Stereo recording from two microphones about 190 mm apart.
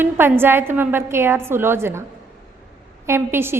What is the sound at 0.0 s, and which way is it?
A woman's voice, 10° right (ahead or behind).